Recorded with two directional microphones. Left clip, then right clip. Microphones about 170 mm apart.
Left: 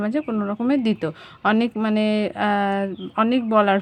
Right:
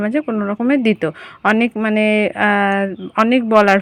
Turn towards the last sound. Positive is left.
turn(degrees=-20)  # may be behind; listen again after turning